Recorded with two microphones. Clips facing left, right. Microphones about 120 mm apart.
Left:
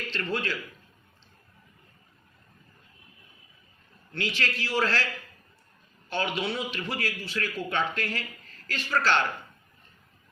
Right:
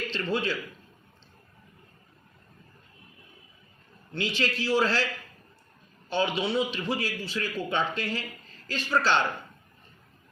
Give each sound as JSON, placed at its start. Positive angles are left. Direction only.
{"t": 0.1, "sound": "a man's voice", "side_deg": -15}
{"t": 4.1, "sound": "a man's voice", "side_deg": -20}
{"t": 6.1, "sound": "a man's voice", "side_deg": -25}